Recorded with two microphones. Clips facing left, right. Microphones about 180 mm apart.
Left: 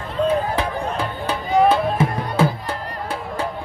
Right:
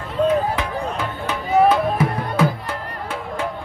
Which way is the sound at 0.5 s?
30° left (ahead or behind).